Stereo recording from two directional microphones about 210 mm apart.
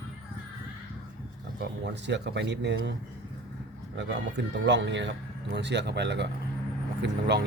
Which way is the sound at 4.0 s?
55° right (ahead or behind).